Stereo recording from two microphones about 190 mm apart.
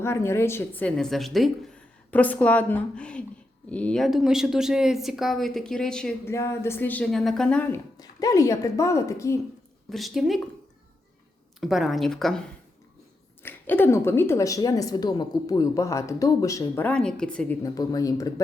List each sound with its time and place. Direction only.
0.0 s a woman's voice: 15° left (ahead or behind)
9.9 s speech: centre (ahead or behind)
11.6 s speech: centre (ahead or behind)
13.4 s a woman's voice: 10° left (ahead or behind)
17.6 s speech: 20° left (ahead or behind)